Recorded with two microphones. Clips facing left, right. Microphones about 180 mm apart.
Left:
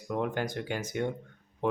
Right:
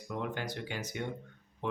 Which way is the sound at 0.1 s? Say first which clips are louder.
Left 6 dB; 50° left (ahead or behind).